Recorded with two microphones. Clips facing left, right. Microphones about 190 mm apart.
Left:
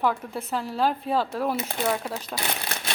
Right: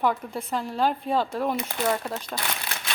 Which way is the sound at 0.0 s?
Centre (ahead or behind).